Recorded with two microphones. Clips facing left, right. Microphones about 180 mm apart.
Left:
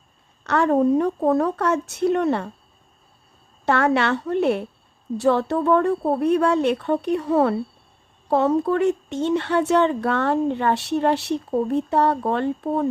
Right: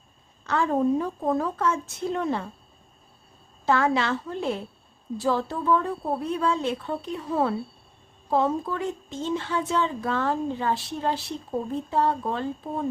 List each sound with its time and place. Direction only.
0.4 s speech: 65° left (ahead or behind)
3.7 s speech: 65° left (ahead or behind)